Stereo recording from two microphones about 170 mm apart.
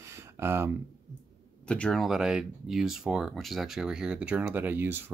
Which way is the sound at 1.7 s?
5° left (ahead or behind).